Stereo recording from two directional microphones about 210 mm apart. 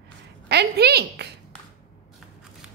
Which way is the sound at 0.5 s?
50° right (ahead or behind).